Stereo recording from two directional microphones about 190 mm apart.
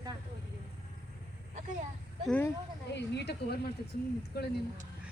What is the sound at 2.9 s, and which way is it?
Speech, 65° left (ahead or behind).